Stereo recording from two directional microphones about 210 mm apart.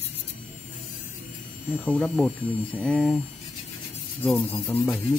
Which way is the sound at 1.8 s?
5° left (ahead or behind).